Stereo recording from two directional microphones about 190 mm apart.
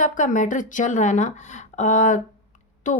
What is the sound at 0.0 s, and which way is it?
Speech, 40° left (ahead or behind).